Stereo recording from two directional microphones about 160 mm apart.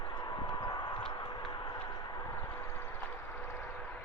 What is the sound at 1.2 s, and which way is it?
Vehicle, 25° left (ahead or behind).